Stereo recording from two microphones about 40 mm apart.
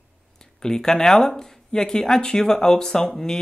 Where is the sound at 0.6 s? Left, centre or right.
Centre.